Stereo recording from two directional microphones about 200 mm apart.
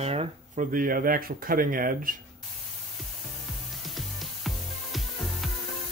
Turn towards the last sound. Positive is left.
turn(degrees=0)  # may be behind; listen again after turning